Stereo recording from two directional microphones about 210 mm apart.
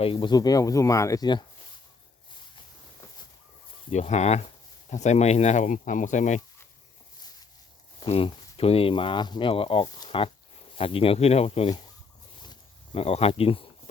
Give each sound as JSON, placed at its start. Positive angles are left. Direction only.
{"t": 0.0, "sound": "speech", "side_deg": 25}
{"t": 3.9, "sound": "speech", "side_deg": 30}
{"t": 7.9, "sound": "speech", "side_deg": 25}
{"t": 12.4, "sound": "a sound", "side_deg": 25}